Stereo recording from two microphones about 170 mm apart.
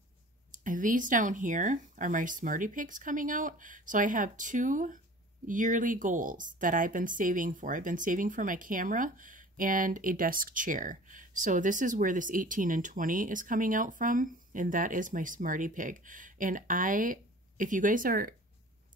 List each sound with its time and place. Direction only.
0.5 s speech: 50° right (ahead or behind)